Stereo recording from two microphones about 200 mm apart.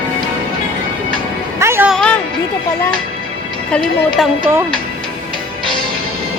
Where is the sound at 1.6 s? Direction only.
10° right (ahead or behind).